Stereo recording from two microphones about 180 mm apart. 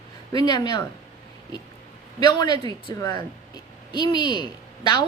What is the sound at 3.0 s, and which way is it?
Speech, 25° left (ahead or behind).